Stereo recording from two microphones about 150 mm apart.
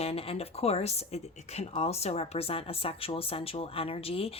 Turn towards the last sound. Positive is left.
turn(degrees=40)  # may be behind; listen again after turning